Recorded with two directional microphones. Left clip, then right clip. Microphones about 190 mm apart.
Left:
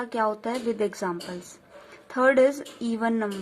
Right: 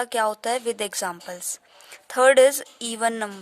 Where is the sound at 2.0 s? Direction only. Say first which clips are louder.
Right 4 dB; 50° right (ahead or behind).